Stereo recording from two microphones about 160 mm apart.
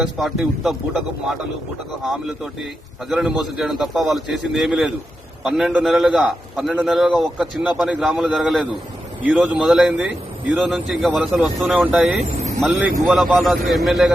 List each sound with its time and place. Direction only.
0.0 s a man's voice: centre (ahead or behind)
12.2 s speech: 45° right (ahead or behind)
12.7 s speech: 20° right (ahead or behind)
13.1 s a man's voice: centre (ahead or behind)